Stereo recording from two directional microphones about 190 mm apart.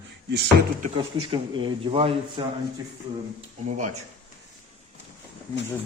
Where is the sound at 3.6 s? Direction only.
40° right (ahead or behind).